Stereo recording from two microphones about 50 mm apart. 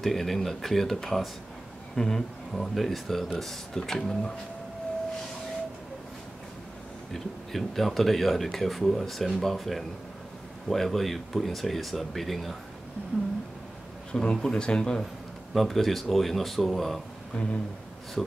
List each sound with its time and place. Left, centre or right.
0.0 s speech: centre
7.2 s speech: centre
14.1 s speech: centre
15.5 s speech: centre
17.3 s a sound: left